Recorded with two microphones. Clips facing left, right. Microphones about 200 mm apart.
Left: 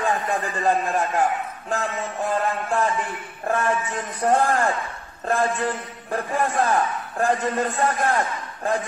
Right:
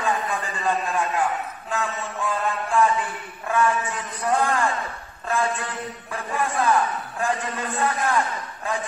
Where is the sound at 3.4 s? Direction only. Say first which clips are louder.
Right 1 dB; 40° left (ahead or behind).